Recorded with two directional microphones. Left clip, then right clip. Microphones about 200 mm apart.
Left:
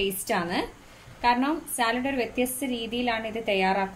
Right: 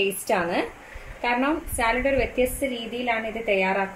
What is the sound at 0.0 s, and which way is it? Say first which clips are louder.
A woman's voice: right 4 dB; 10° left (ahead or behind).